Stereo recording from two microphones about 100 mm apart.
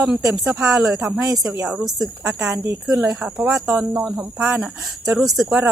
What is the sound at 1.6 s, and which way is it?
Speech, 10° right (ahead or behind).